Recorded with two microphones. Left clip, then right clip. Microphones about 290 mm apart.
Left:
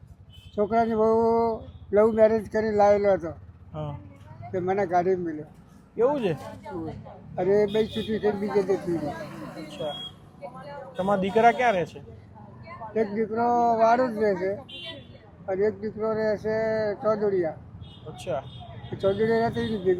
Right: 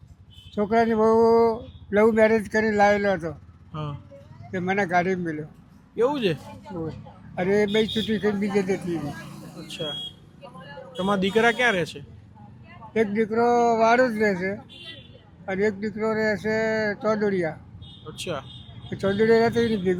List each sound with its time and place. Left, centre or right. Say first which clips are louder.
0.5 s speech: right 2 dB; right
3.7 s speech: right 1 dB; right
4.5 s speech: right 1 dB; right
6.1 s a man's voice: left 1 dB; right
7.3 s speech: right 1 dB; right
10.9 s a man's voice: even; right
12.9 s a man's voice: right 3 dB; right
18.9 s a man's voice: right 3 dB; right